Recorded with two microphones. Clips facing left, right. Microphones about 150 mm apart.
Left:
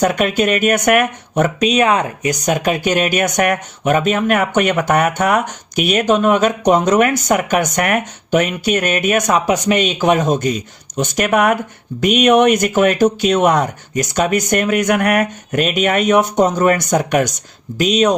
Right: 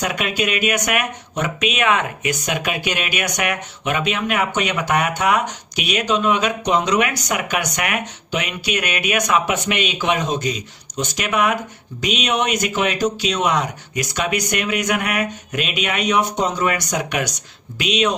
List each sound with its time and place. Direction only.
0.0 s speech: 45° left (ahead or behind)